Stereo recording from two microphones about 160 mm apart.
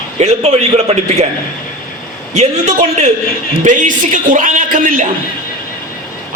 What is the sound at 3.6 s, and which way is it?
A man's voice, 50° right (ahead or behind).